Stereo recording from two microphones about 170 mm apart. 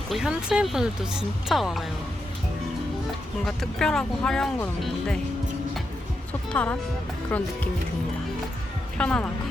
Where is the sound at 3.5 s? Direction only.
Centre (ahead or behind).